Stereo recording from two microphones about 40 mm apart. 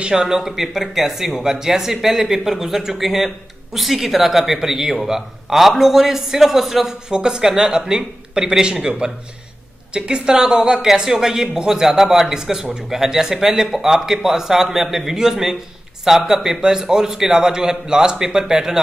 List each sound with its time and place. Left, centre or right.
0.0 s speech: centre
9.9 s speech: right